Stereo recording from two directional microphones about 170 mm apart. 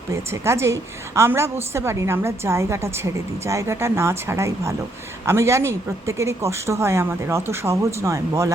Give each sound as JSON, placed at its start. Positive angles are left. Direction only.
{"t": 0.1, "sound": "a woman's voice", "side_deg": -15}